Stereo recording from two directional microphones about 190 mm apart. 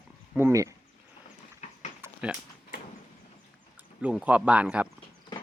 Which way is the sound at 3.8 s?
5° right (ahead or behind).